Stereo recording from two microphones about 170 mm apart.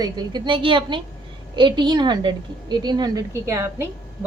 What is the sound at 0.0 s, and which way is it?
A woman's voice, 25° right (ahead or behind).